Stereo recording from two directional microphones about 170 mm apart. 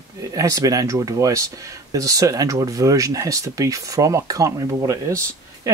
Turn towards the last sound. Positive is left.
turn(degrees=-20)  # may be behind; listen again after turning